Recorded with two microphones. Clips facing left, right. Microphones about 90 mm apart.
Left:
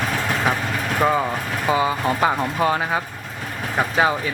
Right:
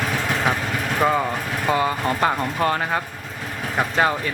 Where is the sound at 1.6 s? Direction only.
5° left (ahead or behind).